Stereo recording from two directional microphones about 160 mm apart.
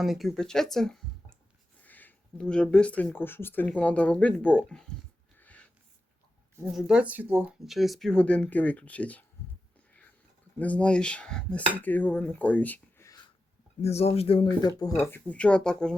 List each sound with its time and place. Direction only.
0.0 s speech: centre (ahead or behind)
5.4 s a sound: 10° left (ahead or behind)
6.7 s speech: 5° right (ahead or behind)
7.6 s speech: centre (ahead or behind)
10.6 s speech: 10° left (ahead or behind)
13.8 s speech: 40° left (ahead or behind)
15.0 s speech: 10° left (ahead or behind)